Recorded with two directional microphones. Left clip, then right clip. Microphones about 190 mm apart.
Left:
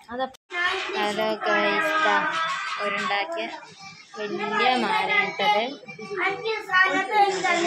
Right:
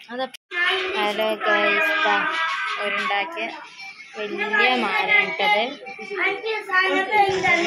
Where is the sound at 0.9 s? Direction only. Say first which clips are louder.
Right 3 dB; 10° right (ahead or behind).